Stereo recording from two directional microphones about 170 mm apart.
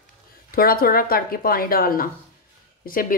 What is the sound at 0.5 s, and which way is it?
A woman's voice, 60° left (ahead or behind).